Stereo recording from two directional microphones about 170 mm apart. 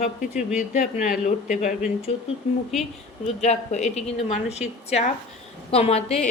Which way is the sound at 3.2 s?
40° left (ahead or behind).